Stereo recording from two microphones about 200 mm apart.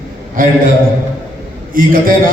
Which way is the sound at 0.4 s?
45° right (ahead or behind).